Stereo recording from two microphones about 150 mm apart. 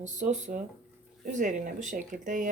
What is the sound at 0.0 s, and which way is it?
Speech, 50° right (ahead or behind).